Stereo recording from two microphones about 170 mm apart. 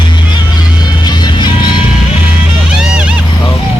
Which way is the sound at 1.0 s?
25° left (ahead or behind).